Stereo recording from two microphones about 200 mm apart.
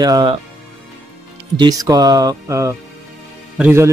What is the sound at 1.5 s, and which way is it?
Speech, 20° right (ahead or behind).